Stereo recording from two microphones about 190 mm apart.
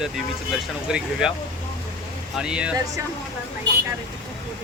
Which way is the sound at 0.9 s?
5° right (ahead or behind).